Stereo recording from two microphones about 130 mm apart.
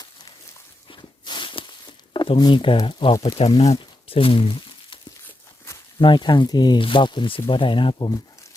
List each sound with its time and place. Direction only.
0.9 s a sound: 35° left (ahead or behind)
2.8 s speech: 40° left (ahead or behind)
5.7 s snake: 20° left (ahead or behind)
6.0 s speech: 35° left (ahead or behind)